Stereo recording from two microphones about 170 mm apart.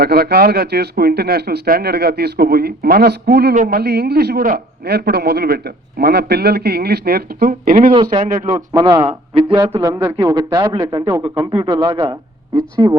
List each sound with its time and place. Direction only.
0.0 s speech: 70° right (ahead or behind)
3.5 s a man's voice: 45° right (ahead or behind)
3.8 s a man's voice: 70° right (ahead or behind); by 8.5 s 50° right (ahead or behind)
8.5 s speech: 20° right (ahead or behind)
9.8 s speech: 20° right (ahead or behind)